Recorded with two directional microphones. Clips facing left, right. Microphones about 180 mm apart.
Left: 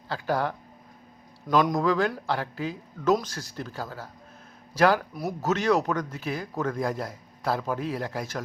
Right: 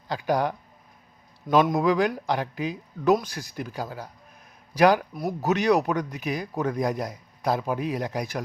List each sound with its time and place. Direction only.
0.1 s speech: 15° right (ahead or behind)
1.7 s speech: 15° right (ahead or behind)